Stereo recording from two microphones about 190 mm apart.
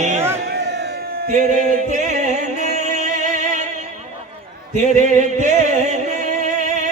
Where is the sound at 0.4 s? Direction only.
60° right (ahead or behind).